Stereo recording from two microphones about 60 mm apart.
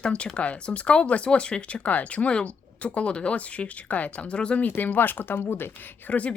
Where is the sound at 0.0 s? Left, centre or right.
Centre.